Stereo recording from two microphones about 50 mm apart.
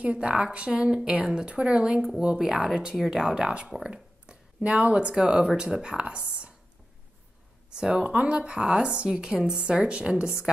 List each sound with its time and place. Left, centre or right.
0.0 s speech: right; by 3.3 s centre
3.3 s speech: centre
7.7 s speech: centre
8.1 s speech: right